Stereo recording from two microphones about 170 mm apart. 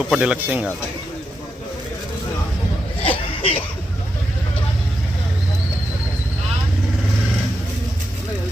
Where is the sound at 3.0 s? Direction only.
35° left (ahead or behind).